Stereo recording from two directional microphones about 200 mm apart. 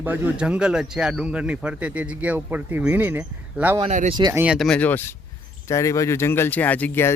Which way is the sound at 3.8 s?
35° right (ahead or behind).